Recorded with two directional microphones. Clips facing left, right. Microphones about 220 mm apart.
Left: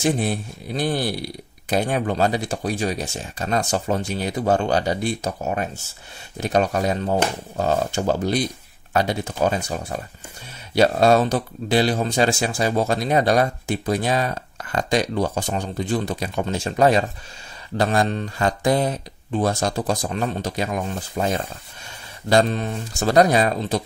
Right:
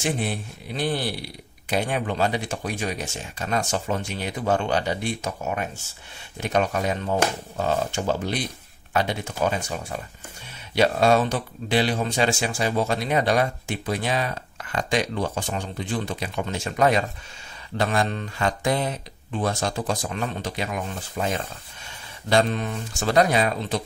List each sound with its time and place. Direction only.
0.0 s speech: 40° left (ahead or behind)